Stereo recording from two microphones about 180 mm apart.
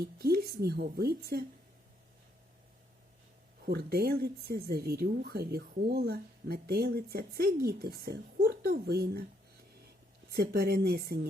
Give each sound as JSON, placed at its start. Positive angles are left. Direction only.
{"t": 0.0, "sound": "speech", "side_deg": -60}
{"t": 3.7, "sound": "speech", "side_deg": -60}
{"t": 10.3, "sound": "speech", "side_deg": -65}